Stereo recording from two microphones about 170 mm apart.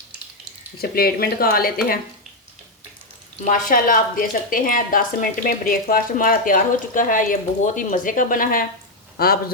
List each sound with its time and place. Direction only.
0.8 s speech: 65° left (ahead or behind)
3.4 s a woman's voice: 55° left (ahead or behind)